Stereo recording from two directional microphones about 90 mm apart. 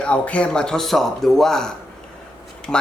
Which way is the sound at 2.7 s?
20° left (ahead or behind).